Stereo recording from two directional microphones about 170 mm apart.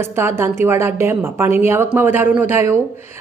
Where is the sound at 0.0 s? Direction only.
15° right (ahead or behind).